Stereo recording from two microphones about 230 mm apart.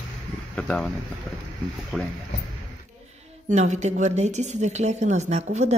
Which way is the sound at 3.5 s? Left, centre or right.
Right.